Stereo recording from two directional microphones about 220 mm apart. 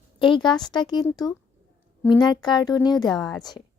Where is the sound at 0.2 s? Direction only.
20° left (ahead or behind).